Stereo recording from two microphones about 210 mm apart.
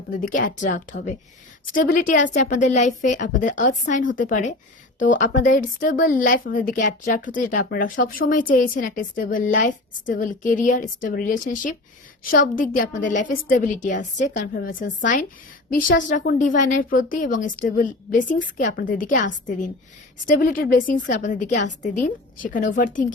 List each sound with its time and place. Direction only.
0.2 s speech: 40° left (ahead or behind)